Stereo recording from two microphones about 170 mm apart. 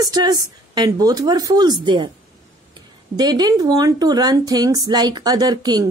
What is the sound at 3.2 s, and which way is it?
Speech, 25° right (ahead or behind).